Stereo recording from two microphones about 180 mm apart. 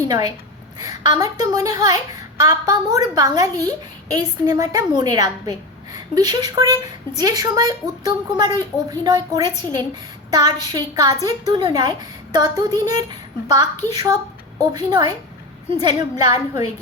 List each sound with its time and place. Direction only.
0.1 s a woman's voice: 20° right (ahead or behind)